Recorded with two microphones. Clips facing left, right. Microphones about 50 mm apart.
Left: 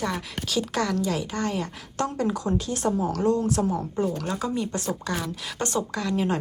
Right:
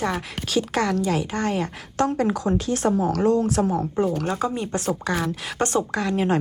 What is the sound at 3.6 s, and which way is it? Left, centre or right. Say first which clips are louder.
Speech: right 3 dB; right.